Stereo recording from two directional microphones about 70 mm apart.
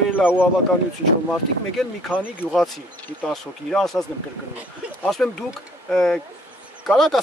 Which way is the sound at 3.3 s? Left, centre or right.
Centre.